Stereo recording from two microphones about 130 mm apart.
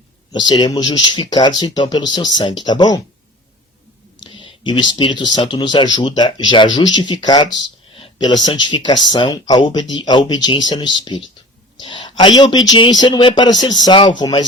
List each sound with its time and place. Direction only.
0.3 s speech: 35° left (ahead or behind)
4.2 s speech: 35° left (ahead or behind)